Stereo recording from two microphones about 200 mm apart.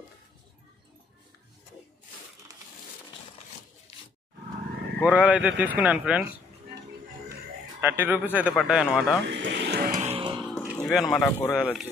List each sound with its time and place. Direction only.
5.0 s speech: 5° right (ahead or behind)
7.8 s speech: 10° right (ahead or behind)
9.2 s music: 65° right (ahead or behind); by 10.4 s 25° right (ahead or behind)
10.6 s music: centre (ahead or behind)
11.2 s speech: 15° left (ahead or behind)
11.5 s speech: centre (ahead or behind)